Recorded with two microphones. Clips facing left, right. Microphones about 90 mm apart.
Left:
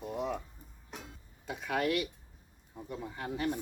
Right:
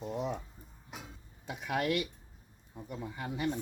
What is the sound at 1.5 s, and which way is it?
Speech, 15° right (ahead or behind).